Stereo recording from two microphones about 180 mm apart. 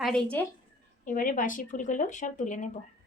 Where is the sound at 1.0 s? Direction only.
50° left (ahead or behind).